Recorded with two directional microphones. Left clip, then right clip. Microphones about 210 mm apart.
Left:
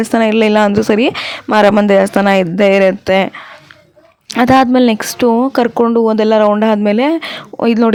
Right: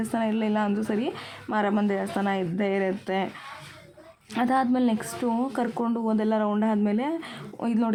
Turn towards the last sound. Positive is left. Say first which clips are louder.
# left 16 dB
turn(degrees=45)  # may be behind; listen again after turning